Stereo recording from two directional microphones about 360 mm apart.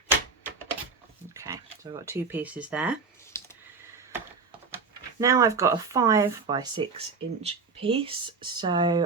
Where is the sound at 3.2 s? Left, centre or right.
Centre.